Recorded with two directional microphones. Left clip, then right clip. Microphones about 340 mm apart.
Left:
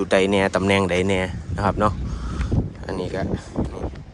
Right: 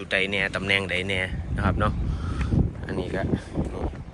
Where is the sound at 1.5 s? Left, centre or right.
Centre.